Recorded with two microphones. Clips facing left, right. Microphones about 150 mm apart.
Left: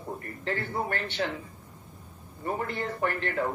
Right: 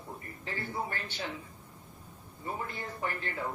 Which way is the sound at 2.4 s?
65° left (ahead or behind).